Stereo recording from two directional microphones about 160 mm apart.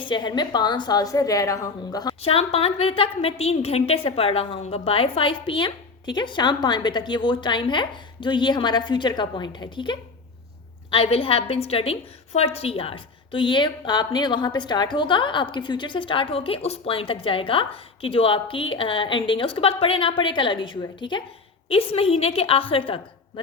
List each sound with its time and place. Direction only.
0.0 s a woman's voice: 30° left (ahead or behind)
2.2 s a woman's voice: 40° left (ahead or behind)